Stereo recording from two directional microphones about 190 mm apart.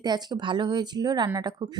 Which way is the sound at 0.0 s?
20° right (ahead or behind).